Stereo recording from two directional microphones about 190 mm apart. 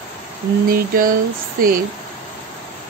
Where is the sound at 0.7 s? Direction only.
50° right (ahead or behind).